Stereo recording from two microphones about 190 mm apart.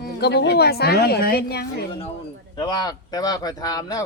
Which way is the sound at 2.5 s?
20° left (ahead or behind).